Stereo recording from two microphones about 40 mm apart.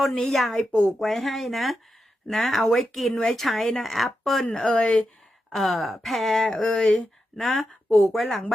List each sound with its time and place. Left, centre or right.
0.2 s speech: centre
0.7 s speech: left
0.9 s speech: centre
4.5 s speech: centre
4.8 s speech: left
5.5 s speech: centre
6.9 s speech: centre